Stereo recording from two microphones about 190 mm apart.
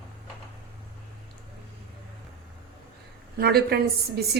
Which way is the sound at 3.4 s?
55° right (ahead or behind).